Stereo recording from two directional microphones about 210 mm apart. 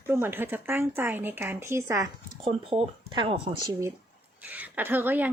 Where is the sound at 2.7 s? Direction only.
25° right (ahead or behind).